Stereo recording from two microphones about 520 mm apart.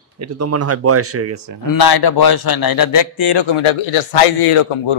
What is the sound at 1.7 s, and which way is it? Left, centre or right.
A man's voice, left.